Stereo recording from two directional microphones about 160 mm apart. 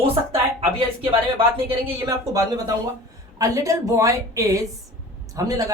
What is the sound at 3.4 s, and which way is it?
Speech, 20° right (ahead or behind).